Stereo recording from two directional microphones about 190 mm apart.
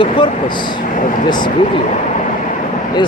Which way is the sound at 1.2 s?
25° left (ahead or behind).